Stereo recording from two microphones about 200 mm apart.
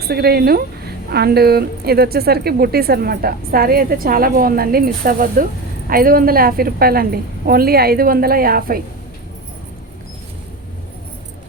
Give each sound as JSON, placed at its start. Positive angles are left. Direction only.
{"t": 0.1, "sound": "a woman's voice", "side_deg": -50}